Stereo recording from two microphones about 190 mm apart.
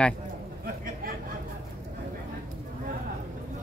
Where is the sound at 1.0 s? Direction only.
50° right (ahead or behind).